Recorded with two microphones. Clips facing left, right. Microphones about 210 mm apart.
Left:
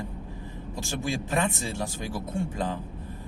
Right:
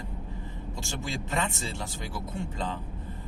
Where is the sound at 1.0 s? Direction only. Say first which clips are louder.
Left 4 dB; 15° left (ahead or behind).